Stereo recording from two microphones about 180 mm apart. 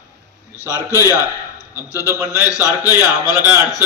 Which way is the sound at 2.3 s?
20° left (ahead or behind).